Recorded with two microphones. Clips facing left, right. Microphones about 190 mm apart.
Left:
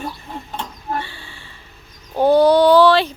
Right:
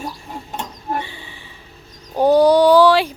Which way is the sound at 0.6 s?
20° right (ahead or behind).